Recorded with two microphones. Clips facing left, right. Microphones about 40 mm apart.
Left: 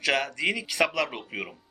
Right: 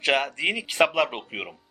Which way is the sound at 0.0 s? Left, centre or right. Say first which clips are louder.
Right 2 dB; right.